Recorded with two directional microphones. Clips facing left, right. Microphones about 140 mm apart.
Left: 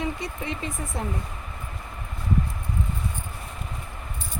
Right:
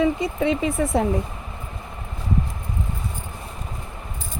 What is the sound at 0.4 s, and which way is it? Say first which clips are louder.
Speech: right 14 dB; 90° right.